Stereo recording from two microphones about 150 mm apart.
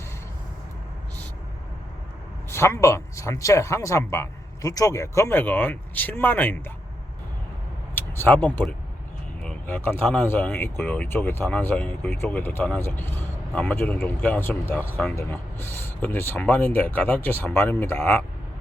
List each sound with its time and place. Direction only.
2.5 s speech: 15° left (ahead or behind)
7.9 s speech: 15° left (ahead or behind)
9.4 s a sound: 10° left (ahead or behind)
10.1 s speech: 10° left (ahead or behind)